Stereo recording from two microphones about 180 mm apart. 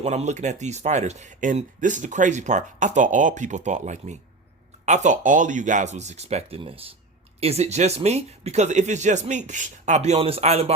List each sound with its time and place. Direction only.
0.0 s speech: 40° right (ahead or behind)